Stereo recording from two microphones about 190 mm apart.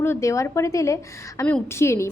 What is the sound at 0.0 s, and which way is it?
A woman's voice, 15° left (ahead or behind).